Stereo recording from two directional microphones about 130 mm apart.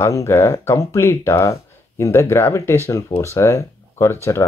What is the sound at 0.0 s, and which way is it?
Speech, 20° left (ahead or behind).